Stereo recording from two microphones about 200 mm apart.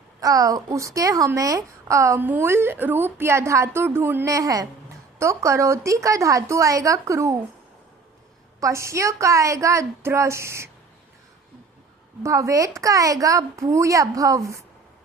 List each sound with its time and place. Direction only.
0.2 s a woman's voice: 15° right (ahead or behind)
8.6 s a woman's voice: 15° right (ahead or behind)
12.2 s a woman's voice: 15° right (ahead or behind)